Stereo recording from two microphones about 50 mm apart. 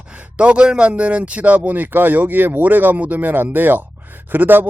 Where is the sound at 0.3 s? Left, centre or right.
Right.